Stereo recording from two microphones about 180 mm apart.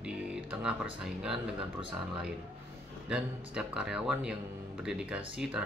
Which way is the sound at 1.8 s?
30° right (ahead or behind).